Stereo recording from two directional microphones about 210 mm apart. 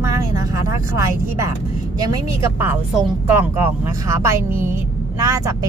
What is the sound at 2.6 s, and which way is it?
Speech, 5° right (ahead or behind).